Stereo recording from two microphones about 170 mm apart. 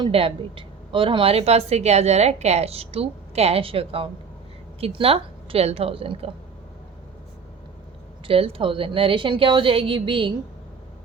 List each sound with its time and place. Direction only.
0.0 s a woman's voice: 35° right (ahead or behind)
8.3 s a woman's voice: 35° right (ahead or behind)